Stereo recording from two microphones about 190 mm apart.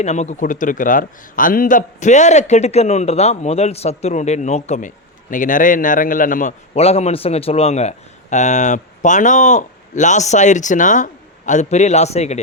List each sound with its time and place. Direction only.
0.0 s a man's voice: 35° left (ahead or behind)